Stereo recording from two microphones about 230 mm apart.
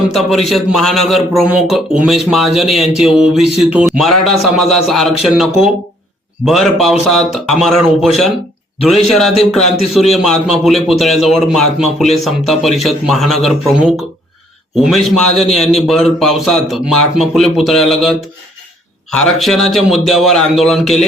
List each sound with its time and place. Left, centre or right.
0.1 s a man's voice: centre